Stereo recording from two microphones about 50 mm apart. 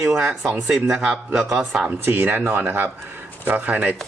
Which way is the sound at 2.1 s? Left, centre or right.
Right.